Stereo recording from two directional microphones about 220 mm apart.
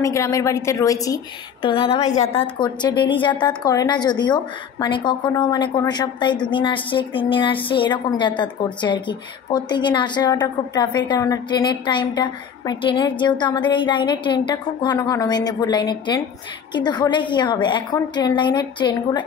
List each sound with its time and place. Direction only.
0.0 s a woman's voice: 15° left (ahead or behind); by 2.4 s 30° left (ahead or behind)
2.6 s a woman's voice: 20° left (ahead or behind)